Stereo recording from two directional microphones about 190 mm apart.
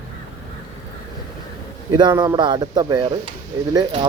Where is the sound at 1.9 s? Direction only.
20° right (ahead or behind).